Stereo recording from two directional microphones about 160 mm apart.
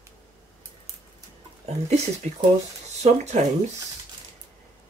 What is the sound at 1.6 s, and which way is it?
Speech, 45° right (ahead or behind).